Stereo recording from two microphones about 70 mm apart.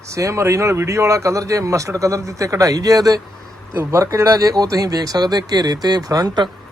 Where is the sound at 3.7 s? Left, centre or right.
Right.